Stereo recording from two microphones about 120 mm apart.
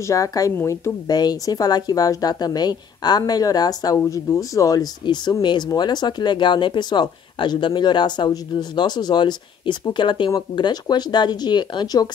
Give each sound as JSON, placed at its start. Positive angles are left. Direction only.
{"t": 0.0, "sound": "speech", "side_deg": 25}